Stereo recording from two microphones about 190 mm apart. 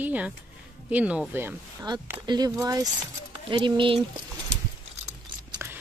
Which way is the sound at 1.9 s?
20° right (ahead or behind).